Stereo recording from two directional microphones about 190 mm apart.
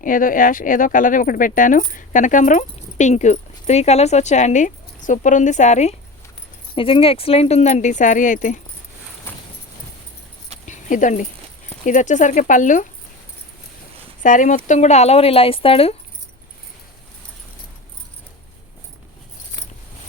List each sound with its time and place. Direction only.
0.0 s speech: 45° left (ahead or behind)
9.3 s clip-clop: 10° left (ahead or behind)
10.7 s a sound: 40° left (ahead or behind)
11.9 s speech: 40° left (ahead or behind)
14.2 s speech: 45° left (ahead or behind)